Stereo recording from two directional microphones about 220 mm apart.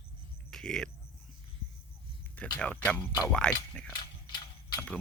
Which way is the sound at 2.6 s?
5° left (ahead or behind).